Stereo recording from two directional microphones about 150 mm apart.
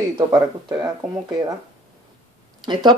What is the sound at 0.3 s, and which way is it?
Speech, 25° right (ahead or behind).